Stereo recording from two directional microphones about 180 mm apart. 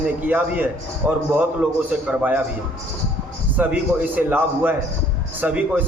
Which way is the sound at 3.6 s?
10° right (ahead or behind).